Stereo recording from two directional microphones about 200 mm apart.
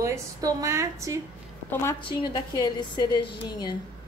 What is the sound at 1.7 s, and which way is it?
A woman's voice, 15° left (ahead or behind).